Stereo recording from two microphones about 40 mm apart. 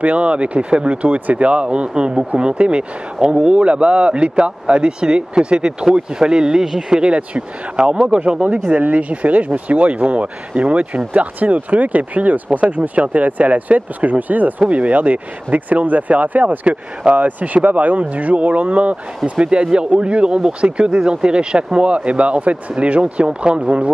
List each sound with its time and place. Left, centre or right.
0.0 s speech: right; by 7.0 s centre
7.0 s speech: right
8.5 s speech: right
11.1 s speech: right
16.6 s speech: right
17.2 s speech: right
19.3 s speech: right